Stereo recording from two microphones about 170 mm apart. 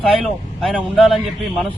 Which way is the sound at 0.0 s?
Centre (ahead or behind).